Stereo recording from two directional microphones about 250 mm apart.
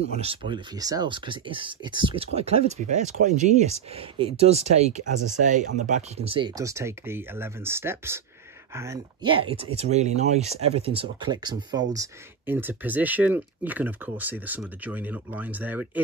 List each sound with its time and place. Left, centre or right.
0.2 s speech: right